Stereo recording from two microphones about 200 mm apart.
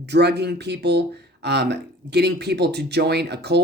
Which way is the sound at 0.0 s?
55° right (ahead or behind).